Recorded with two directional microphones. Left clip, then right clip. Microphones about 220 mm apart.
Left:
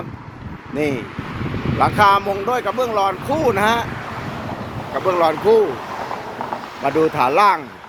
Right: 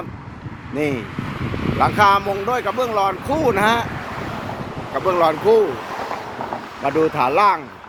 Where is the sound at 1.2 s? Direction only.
50° right (ahead or behind).